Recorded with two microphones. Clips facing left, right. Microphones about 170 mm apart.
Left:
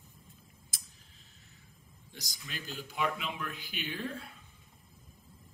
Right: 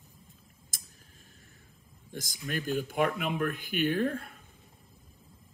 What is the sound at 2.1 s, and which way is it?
Speech, 50° right (ahead or behind).